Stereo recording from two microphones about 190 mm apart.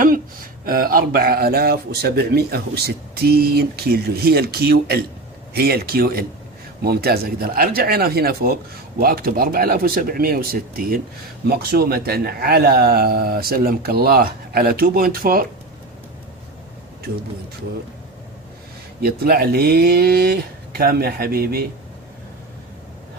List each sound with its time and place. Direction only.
0.6 s a man's voice: 50° right (ahead or behind)
19.0 s a man's voice: 55° right (ahead or behind)